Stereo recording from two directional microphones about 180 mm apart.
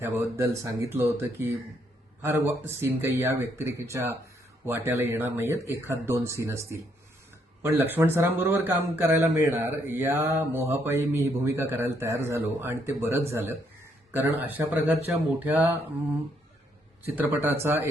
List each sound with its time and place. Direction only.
0.0 s speech: 15° right (ahead or behind)
2.5 s speech: 15° right (ahead or behind)
17.2 s speech: 10° right (ahead or behind)